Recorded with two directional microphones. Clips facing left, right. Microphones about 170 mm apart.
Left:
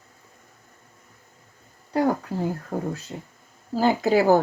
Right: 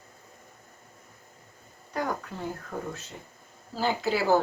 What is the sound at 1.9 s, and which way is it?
Speech, 30° left (ahead or behind).